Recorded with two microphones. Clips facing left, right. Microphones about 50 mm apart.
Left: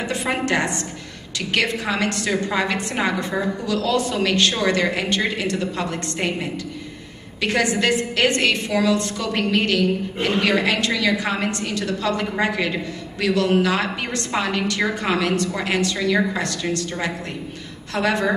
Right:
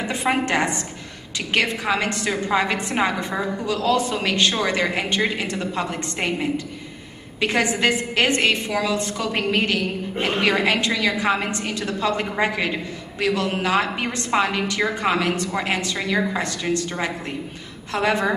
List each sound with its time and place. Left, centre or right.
0.0 s a woman's voice: right